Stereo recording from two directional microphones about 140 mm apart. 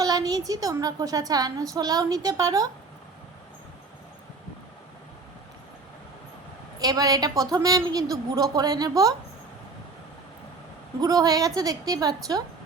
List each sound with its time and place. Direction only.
0.0 s a woman's voice: 25° right (ahead or behind)
6.7 s a woman's voice: 25° right (ahead or behind)
11.0 s a woman's voice: 25° right (ahead or behind)